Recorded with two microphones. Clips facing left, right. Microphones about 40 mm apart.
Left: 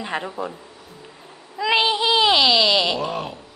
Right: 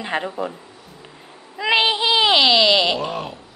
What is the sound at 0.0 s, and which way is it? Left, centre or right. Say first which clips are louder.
Speech: right 3 dB; right.